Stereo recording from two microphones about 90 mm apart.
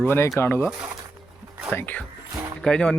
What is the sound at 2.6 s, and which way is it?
Speech, 10° left (ahead or behind).